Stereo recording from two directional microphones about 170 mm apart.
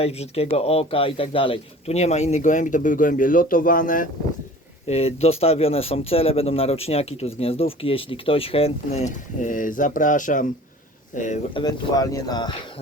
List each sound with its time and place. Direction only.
0.0 s speech: 35° left (ahead or behind); by 4.1 s 55° left (ahead or behind)
4.9 s speech: 35° left (ahead or behind)
11.5 s speech: 25° left (ahead or behind)